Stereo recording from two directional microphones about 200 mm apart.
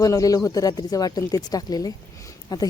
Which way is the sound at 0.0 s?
15° left (ahead or behind).